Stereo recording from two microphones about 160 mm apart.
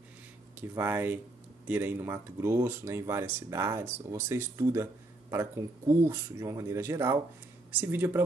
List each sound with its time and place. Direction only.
0.6 s speech: 15° right (ahead or behind)